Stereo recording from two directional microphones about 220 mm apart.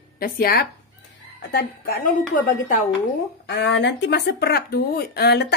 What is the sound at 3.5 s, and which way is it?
Speech, 50° left (ahead or behind).